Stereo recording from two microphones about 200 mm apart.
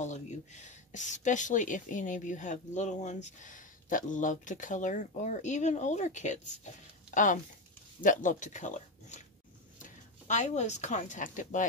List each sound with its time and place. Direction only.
0.0 s speech: 35° left (ahead or behind)